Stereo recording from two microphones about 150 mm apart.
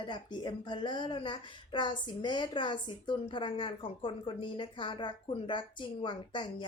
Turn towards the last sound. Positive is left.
turn(degrees=30)  # may be behind; listen again after turning